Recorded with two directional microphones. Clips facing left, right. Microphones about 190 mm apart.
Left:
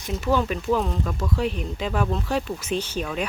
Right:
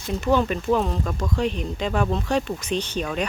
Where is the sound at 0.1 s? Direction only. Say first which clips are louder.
Right 2 dB; 5° left (ahead or behind).